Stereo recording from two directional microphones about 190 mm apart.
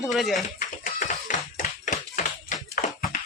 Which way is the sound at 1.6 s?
45° left (ahead or behind).